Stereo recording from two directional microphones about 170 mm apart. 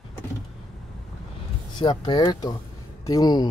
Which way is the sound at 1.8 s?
25° left (ahead or behind).